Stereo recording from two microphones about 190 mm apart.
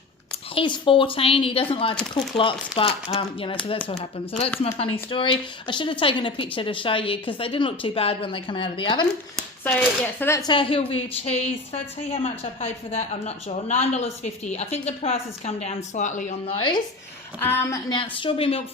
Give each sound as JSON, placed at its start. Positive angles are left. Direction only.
{"t": 0.5, "sound": "speech", "side_deg": 25}
{"t": 4.8, "sound": "speech", "side_deg": 30}
{"t": 9.6, "sound": "speech", "side_deg": 10}
{"t": 16.6, "sound": "speech", "side_deg": 25}
{"t": 17.4, "sound": "speech", "side_deg": 10}